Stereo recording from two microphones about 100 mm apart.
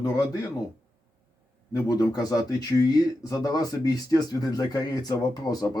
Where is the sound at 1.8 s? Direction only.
40° left (ahead or behind).